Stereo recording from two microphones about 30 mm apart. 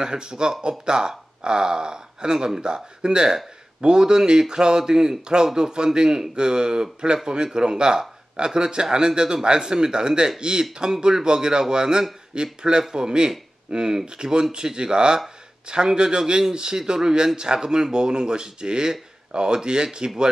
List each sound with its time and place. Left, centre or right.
0.0 s speech: right